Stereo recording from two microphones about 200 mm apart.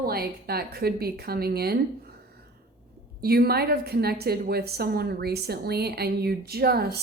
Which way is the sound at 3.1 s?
50° right (ahead or behind).